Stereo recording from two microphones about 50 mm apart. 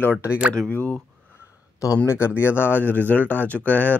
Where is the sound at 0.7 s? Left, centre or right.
Left.